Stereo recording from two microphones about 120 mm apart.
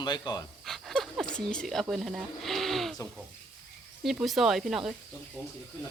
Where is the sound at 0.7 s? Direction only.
Centre (ahead or behind).